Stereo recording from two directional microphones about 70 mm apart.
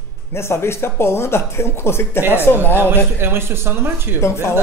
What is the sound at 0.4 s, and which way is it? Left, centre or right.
Speech, left.